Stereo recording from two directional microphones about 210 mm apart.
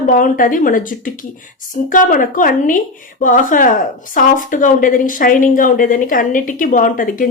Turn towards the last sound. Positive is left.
turn(degrees=40)  # may be behind; listen again after turning